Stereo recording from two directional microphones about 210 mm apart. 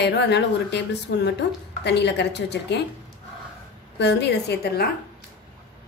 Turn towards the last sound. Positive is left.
turn(degrees=50)  # may be behind; listen again after turning